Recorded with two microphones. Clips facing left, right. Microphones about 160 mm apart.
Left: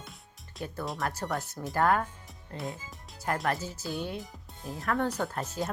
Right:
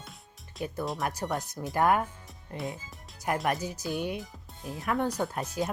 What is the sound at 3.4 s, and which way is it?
Speech, 15° right (ahead or behind).